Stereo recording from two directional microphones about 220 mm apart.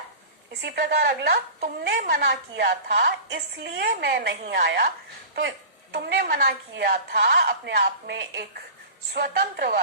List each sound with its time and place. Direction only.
0.6 s a woman's voice: 50° right (ahead or behind)